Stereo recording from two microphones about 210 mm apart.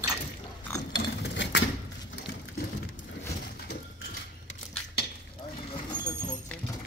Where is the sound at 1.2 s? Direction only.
55° left (ahead or behind).